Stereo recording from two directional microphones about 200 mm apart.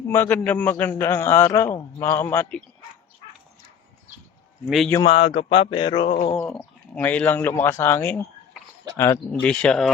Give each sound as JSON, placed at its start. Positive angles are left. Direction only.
{"t": 0.1, "sound": "a man's voice", "side_deg": 10}
{"t": 4.9, "sound": "a man's voice", "side_deg": 15}
{"t": 5.1, "sound": "speech", "side_deg": 30}
{"t": 6.3, "sound": "a man's voice", "side_deg": 5}
{"t": 9.3, "sound": "speech", "side_deg": 5}